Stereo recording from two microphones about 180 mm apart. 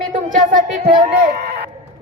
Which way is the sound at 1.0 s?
50° right (ahead or behind).